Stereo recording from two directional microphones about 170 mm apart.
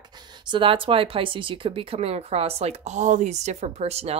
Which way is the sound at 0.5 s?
30° right (ahead or behind).